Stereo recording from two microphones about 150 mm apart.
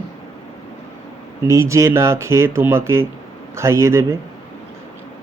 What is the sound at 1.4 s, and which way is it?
Speech, 20° right (ahead or behind).